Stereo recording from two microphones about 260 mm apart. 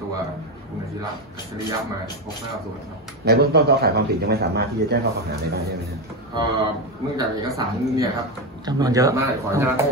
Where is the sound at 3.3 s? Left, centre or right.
Right.